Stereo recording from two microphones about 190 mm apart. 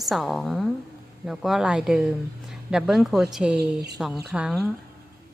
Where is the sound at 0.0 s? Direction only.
Centre (ahead or behind).